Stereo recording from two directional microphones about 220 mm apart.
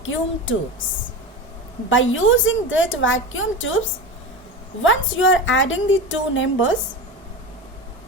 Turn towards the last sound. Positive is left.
turn(degrees=60)  # may be behind; listen again after turning